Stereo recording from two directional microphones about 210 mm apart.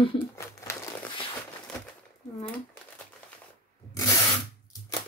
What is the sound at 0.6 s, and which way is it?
Crumpling, 15° left (ahead or behind).